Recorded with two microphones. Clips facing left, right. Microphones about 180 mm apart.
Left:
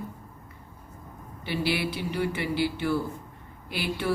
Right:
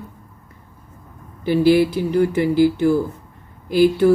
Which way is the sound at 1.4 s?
45° right (ahead or behind).